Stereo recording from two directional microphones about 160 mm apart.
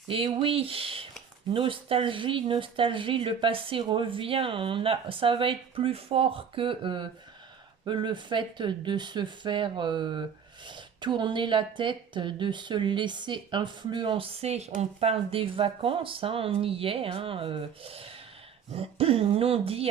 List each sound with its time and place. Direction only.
0.1 s speech: 35° right (ahead or behind)